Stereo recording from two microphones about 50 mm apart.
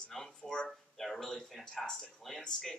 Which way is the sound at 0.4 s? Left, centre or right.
Centre.